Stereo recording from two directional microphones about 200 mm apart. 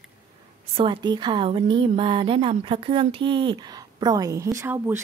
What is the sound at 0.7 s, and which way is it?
A woman's voice, 25° right (ahead or behind).